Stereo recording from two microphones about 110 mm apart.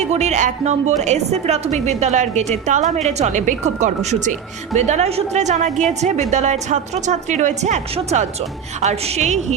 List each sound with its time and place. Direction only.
0.0 s a woman's voice: 90° right